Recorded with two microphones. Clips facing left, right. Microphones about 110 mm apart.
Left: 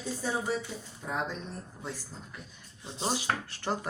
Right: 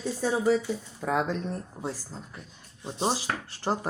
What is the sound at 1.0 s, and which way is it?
Speech, 85° right.